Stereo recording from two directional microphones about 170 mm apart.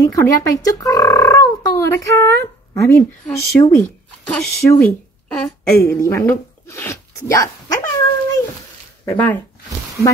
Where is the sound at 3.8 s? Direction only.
10° left (ahead or behind).